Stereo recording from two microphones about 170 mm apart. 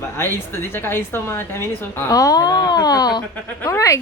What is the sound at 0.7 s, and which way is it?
A woman's voice, 15° left (ahead or behind).